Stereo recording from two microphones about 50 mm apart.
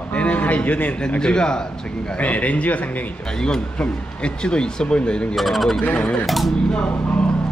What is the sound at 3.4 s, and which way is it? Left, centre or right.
Speech, centre.